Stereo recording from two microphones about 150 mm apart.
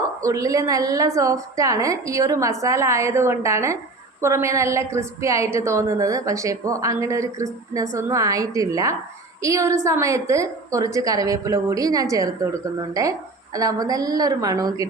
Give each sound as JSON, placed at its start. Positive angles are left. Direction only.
{"t": 0.2, "sound": "a woman's voice", "side_deg": -20}